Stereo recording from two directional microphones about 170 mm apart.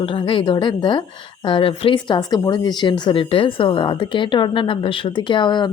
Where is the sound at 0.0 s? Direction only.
30° left (ahead or behind).